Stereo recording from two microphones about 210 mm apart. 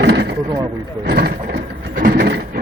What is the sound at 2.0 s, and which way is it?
Printer, 50° right (ahead or behind).